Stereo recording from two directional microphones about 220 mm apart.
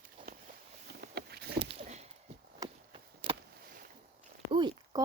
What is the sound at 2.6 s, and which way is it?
Chop, 25° right (ahead or behind).